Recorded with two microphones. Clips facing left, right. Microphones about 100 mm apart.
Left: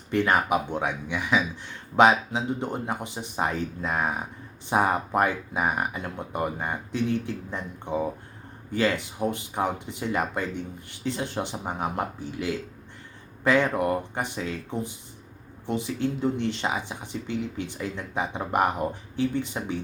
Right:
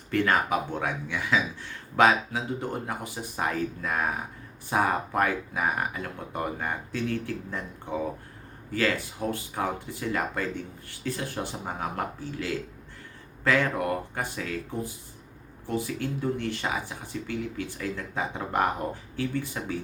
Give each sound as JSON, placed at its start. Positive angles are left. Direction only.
{"t": 0.1, "sound": "speech", "side_deg": 20}